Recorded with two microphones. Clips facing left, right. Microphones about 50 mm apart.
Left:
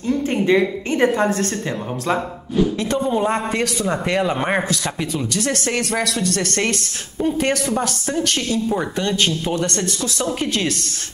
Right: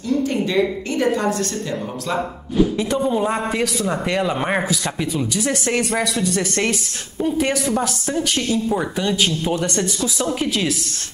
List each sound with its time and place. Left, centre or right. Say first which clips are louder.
0.3 s a woman's voice: left 2 dB; left
2.5 s a woman's voice: right 1 dB; centre
5.3 s speech: left 1 dB; centre